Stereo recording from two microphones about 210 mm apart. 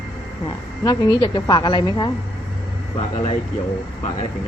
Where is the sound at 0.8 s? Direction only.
20° left (ahead or behind).